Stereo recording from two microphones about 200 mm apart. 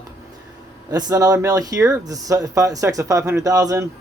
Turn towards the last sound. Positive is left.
turn(degrees=-15)  # may be behind; listen again after turning